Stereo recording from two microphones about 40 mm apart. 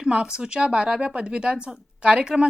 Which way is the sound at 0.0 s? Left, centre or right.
Centre.